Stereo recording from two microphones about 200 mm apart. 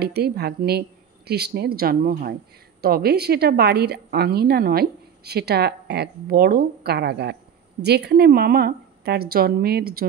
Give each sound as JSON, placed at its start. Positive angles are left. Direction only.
{"t": 0.0, "sound": "speech", "side_deg": -55}